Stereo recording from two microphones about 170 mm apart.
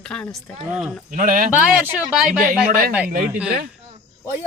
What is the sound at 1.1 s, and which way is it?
Speech, 50° right (ahead or behind).